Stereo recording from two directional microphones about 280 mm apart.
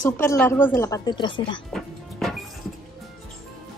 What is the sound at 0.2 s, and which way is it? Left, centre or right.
A woman's voice, centre.